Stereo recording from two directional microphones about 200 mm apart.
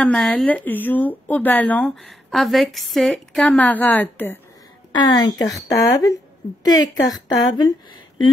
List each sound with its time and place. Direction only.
0.0 s speech: 5° left (ahead or behind)
4.9 s a woman's voice: 20° left (ahead or behind)